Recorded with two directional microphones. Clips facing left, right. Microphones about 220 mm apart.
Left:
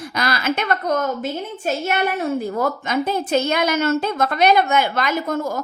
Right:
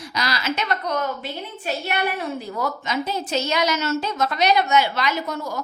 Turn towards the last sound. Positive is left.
turn(degrees=50)  # may be behind; listen again after turning